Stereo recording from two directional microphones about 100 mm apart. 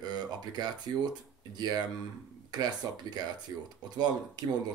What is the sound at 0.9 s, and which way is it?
Speech, 50° right (ahead or behind).